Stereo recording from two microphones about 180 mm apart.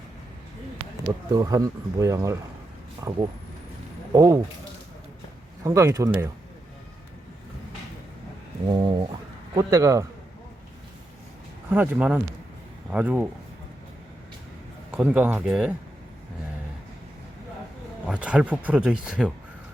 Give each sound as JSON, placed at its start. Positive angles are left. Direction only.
{"t": 1.0, "sound": "speech", "side_deg": -20}
{"t": 5.6, "sound": "speech", "side_deg": -20}
{"t": 8.6, "sound": "speech", "side_deg": -25}
{"t": 9.6, "sound": "speech", "side_deg": -15}
{"t": 11.7, "sound": "speech", "side_deg": -10}
{"t": 14.9, "sound": "speech", "side_deg": -5}
{"t": 18.1, "sound": "speech", "side_deg": -5}